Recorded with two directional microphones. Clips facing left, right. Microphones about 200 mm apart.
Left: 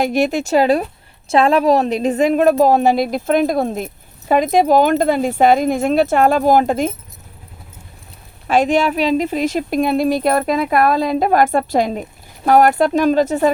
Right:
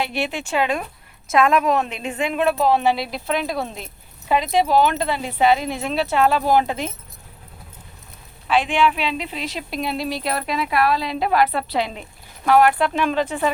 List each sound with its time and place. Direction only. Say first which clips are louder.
0.0 s speech: left 9 dB; 45° left (ahead or behind)
8.4 s speech: left 4 dB; 45° left (ahead or behind)